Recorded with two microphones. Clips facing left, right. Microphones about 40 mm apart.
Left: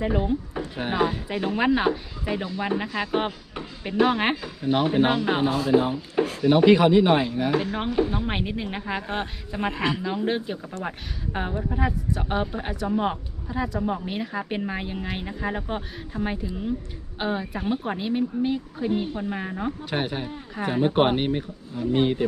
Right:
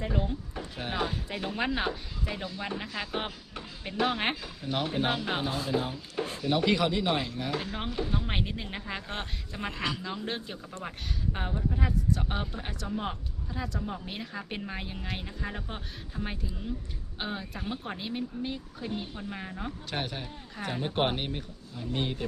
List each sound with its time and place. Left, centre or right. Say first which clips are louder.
0.0 s speech: left 8 dB; centre
9.6 s speech: left 8 dB; left